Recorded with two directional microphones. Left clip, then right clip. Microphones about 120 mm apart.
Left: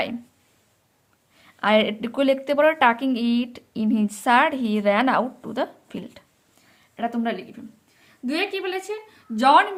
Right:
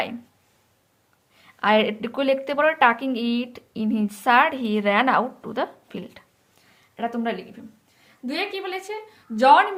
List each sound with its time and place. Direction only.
1.4 s a woman's voice: 35° left (ahead or behind)
8.0 s a woman's voice: 40° left (ahead or behind)